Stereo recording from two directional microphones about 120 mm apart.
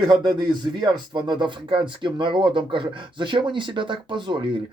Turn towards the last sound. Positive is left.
turn(degrees=-45)  # may be behind; listen again after turning